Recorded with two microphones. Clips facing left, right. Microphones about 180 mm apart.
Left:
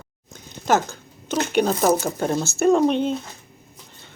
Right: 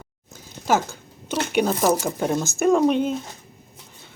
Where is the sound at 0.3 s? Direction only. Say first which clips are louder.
Left 1 dB; 10° right (ahead or behind).